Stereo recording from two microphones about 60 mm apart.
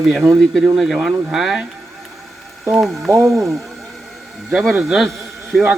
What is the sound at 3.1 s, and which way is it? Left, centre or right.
Speech, right.